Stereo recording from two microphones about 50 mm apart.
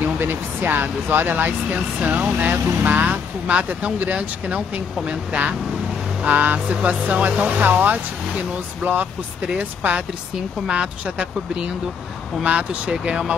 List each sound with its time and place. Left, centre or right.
0.0 s speech: right
7.6 s speech: right